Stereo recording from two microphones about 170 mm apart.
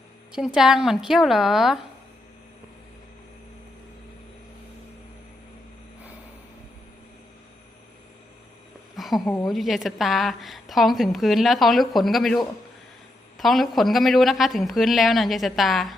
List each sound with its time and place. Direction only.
0.3 s a woman's voice: 5° right (ahead or behind)
9.0 s a sound: centre (ahead or behind)
9.3 s a woman's voice: centre (ahead or behind)